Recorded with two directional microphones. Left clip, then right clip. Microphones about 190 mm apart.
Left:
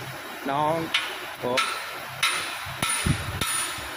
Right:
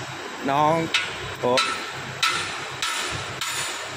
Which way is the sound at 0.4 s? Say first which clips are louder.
Right 4 dB; 15° right (ahead or behind).